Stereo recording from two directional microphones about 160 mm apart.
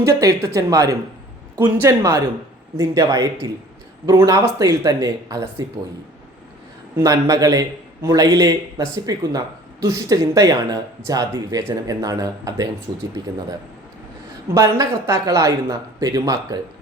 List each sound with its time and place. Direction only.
0.0 s speech: 20° right (ahead or behind)
6.9 s speech: 20° right (ahead or behind)
14.5 s speech: 20° right (ahead or behind)